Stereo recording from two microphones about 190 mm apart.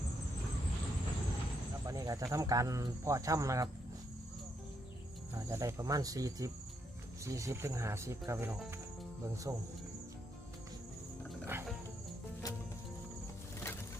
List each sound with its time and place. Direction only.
1.9 s a sound: 15° right (ahead or behind)
2.3 s speech: 20° right (ahead or behind)
5.3 s speech: 15° right (ahead or behind)
11.4 s music: 10° right (ahead or behind)